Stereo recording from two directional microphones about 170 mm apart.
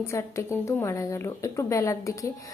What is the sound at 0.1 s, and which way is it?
A woman's voice, 15° left (ahead or behind).